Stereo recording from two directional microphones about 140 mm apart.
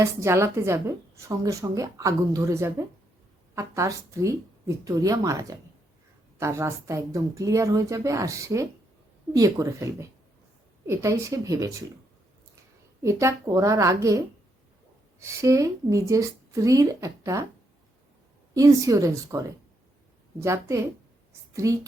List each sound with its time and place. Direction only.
0.0 s a woman's voice: 20° right (ahead or behind)
13.0 s a woman's voice: 20° right (ahead or behind)
18.5 s a woman's voice: 25° right (ahead or behind)